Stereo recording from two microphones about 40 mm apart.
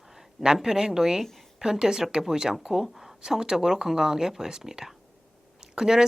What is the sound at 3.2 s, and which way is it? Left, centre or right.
A woman's voice, centre.